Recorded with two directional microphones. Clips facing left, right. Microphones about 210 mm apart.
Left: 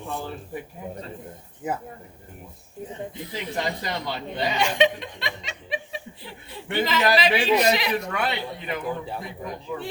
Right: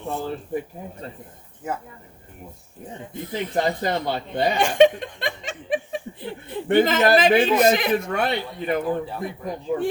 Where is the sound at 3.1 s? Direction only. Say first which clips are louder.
Right 5 dB; 50° right (ahead or behind).